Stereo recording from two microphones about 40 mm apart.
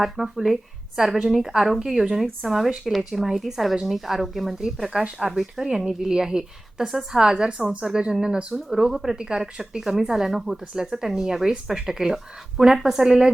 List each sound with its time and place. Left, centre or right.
0.0 s speech: centre
4.9 s speech: right
5.3 s speech: centre